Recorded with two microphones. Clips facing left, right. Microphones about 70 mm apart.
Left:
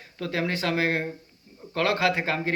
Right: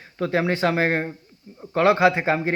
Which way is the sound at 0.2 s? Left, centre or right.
Right.